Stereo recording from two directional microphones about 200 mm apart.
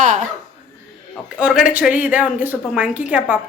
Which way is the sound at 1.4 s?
5° right (ahead or behind).